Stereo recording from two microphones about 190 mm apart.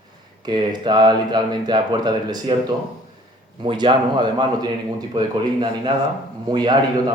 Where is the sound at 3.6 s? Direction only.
25° right (ahead or behind).